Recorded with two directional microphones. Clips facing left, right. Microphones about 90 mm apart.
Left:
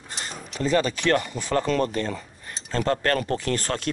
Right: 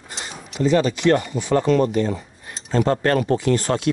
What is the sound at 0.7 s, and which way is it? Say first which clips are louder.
Speech: right 4 dB; 30° right (ahead or behind).